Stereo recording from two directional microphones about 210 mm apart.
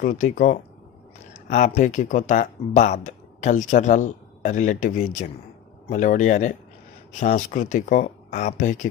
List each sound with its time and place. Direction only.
0.0 s speech: 40° left (ahead or behind)